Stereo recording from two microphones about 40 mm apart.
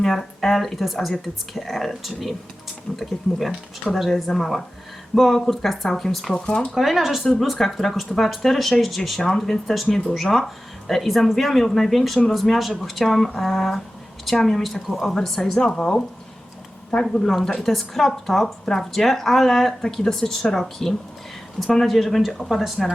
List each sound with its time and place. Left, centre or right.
0.0 s speech: centre
2.9 s speech: centre
6.3 s speech: left
6.7 s speech: centre
15.0 s a woman's voice: centre